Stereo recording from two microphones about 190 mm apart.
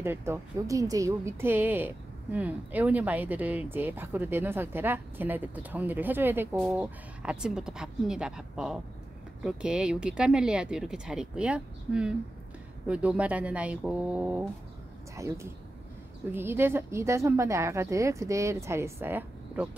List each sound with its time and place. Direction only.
0.0 s a woman's voice: 15° right (ahead or behind)